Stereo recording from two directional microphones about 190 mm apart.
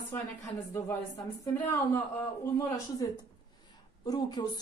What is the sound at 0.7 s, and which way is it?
Speech, 15° left (ahead or behind).